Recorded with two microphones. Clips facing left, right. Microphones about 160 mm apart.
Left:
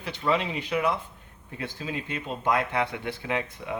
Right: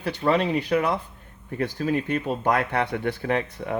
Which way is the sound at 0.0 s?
55° right (ahead or behind).